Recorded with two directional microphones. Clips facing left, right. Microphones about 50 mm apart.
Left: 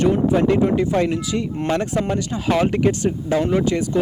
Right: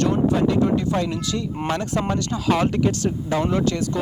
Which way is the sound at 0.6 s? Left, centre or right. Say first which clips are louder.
Left 3 dB; left.